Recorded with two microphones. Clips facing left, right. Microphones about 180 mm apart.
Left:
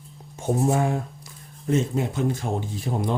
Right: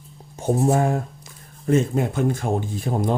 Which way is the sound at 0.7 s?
40° right (ahead or behind).